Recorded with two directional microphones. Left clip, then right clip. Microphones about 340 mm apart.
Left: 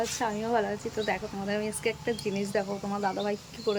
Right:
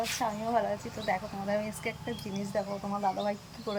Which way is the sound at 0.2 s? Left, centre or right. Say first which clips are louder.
Left 1 dB; centre.